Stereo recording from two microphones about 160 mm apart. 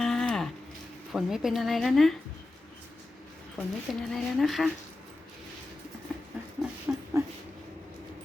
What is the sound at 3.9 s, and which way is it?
Speech, centre (ahead or behind).